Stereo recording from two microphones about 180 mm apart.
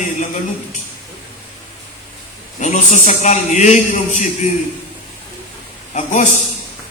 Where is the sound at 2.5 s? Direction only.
40° left (ahead or behind).